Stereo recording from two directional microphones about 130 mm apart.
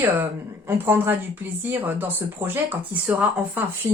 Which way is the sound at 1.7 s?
15° right (ahead or behind).